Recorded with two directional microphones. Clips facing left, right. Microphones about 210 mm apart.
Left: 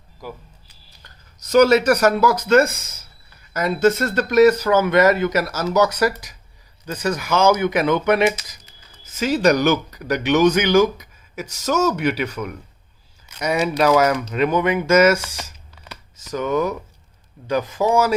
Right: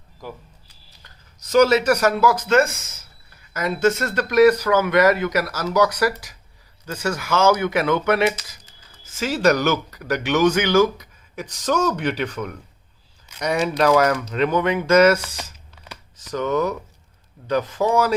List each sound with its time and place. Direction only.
1.0 s speech: 45° left (ahead or behind); by 15.2 s 10° left (ahead or behind)
16.2 s speech: 10° left (ahead or behind)